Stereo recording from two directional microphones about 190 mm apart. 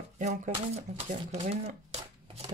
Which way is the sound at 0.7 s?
35° right (ahead or behind).